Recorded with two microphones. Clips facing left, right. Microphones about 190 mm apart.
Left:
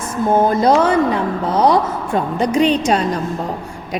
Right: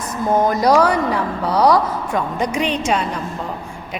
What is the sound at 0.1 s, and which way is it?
A woman's voice, 25° left (ahead or behind).